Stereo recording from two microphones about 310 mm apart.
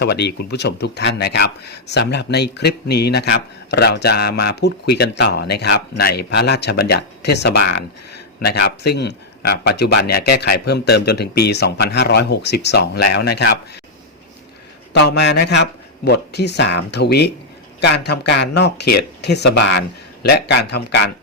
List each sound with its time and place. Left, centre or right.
0.0 s speech: left
14.9 s speech: left